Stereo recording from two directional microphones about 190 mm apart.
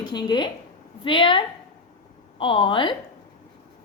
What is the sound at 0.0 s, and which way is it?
A woman's voice, 20° left (ahead or behind).